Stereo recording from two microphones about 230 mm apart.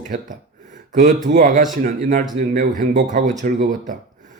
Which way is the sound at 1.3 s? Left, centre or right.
Right.